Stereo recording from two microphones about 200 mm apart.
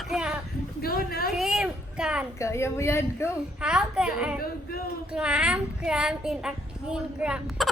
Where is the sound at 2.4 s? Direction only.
15° left (ahead or behind).